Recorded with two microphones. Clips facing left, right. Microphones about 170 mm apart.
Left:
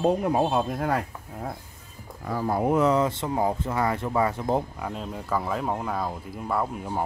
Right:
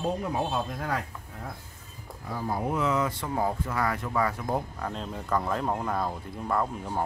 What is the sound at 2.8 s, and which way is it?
Speech, 30° left (ahead or behind).